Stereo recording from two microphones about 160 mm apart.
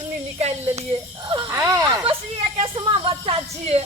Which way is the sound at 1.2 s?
30° right (ahead or behind).